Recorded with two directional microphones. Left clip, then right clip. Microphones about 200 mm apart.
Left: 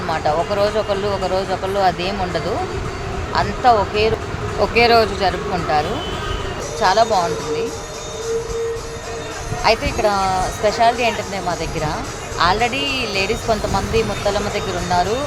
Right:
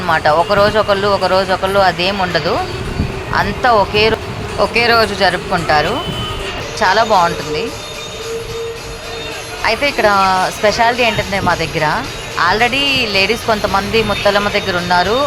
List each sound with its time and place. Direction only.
0.1 s speech: 10° right (ahead or behind)
9.6 s speech: 20° right (ahead or behind)